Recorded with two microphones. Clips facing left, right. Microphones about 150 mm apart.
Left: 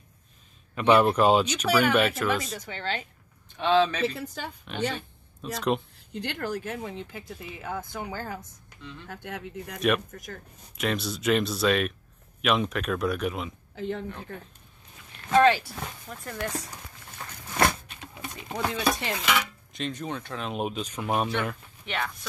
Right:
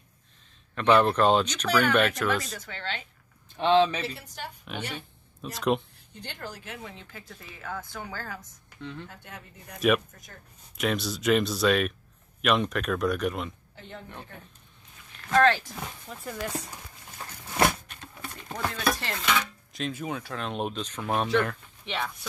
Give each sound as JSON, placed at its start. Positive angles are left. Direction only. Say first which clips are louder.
{"t": 0.7, "sound": "speech", "louder": "left 1 dB", "side_deg": 10}
{"t": 3.5, "sound": "speech", "louder": "right 1 dB", "side_deg": -25}
{"t": 4.6, "sound": "a woman's voice", "louder": "left 8 dB", "side_deg": -10}
{"t": 6.1, "sound": "speech", "louder": "left 9 dB", "side_deg": 75}
{"t": 7.1, "sound": "speech", "louder": "left 6 dB", "side_deg": 20}
{"t": 9.1, "sound": "speech", "louder": "left 9 dB", "side_deg": 70}
{"t": 9.8, "sound": "speech", "louder": "right 2 dB", "side_deg": 0}
{"t": 13.7, "sound": "speech", "louder": "left 13 dB", "side_deg": 90}
{"t": 15.2, "sound": "speech", "louder": "left 2 dB", "side_deg": 10}
{"t": 17.6, "sound": "a sound", "louder": "even", "side_deg": -5}
{"t": 18.0, "sound": "dishes", "louder": "left 2 dB", "side_deg": 15}
{"t": 21.5, "sound": "speech", "louder": "left 1 dB", "side_deg": 0}